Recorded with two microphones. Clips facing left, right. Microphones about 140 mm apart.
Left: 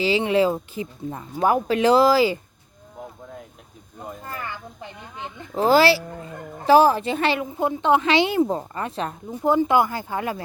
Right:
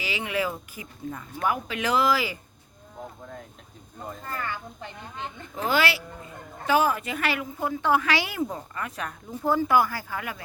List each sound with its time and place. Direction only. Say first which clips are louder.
0.0 s a woman's voice: left 10 dB; 30° left (ahead or behind)
4.0 s speech: even; 15° left (ahead or behind)
5.5 s a woman's voice: left 9 dB; 35° left (ahead or behind)